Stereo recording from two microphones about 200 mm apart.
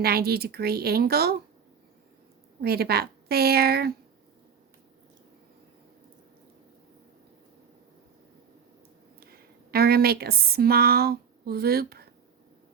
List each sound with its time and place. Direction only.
0.0 s speech: 50° right (ahead or behind)
2.6 s speech: 50° right (ahead or behind)
9.2 s speech: 50° right (ahead or behind)